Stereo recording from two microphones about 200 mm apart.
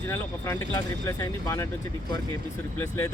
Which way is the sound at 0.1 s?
10° left (ahead or behind).